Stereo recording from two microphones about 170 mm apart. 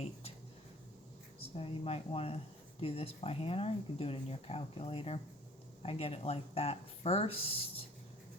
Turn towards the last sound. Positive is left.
turn(degrees=35)  # may be behind; listen again after turning